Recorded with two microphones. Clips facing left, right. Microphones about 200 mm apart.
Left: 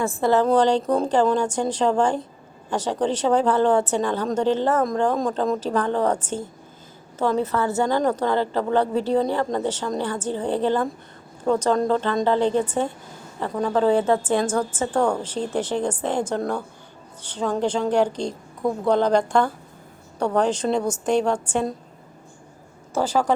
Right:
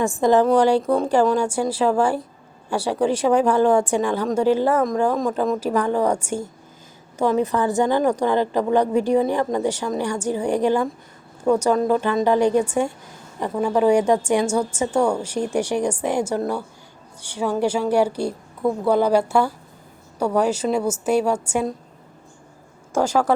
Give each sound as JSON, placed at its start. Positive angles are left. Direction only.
{"t": 0.0, "sound": "a woman's voice", "side_deg": -15}
{"t": 23.0, "sound": "a woman's voice", "side_deg": -10}